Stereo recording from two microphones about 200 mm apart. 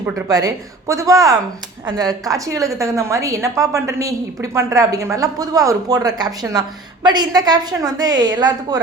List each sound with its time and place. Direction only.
0.0 s a woman's voice: 20° right (ahead or behind)